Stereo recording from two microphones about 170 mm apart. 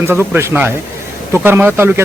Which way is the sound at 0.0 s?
15° right (ahead or behind).